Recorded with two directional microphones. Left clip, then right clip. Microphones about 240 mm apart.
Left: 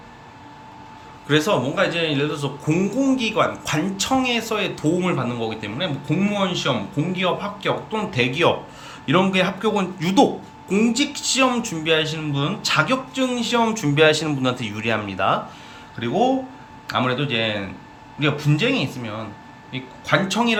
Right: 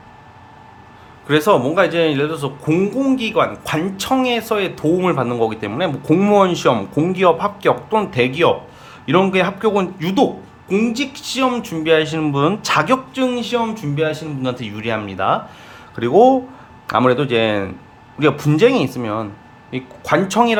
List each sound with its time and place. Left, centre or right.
1.3 s speech: centre
16.0 s speech: right